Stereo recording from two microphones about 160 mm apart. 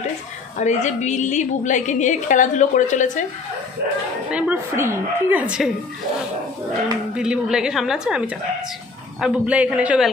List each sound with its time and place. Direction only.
0.6 s a woman's voice: 45° left (ahead or behind)
4.3 s a woman's voice: 10° right (ahead or behind)
7.2 s a woman's voice: 5° right (ahead or behind)
9.2 s a woman's voice: 10° right (ahead or behind)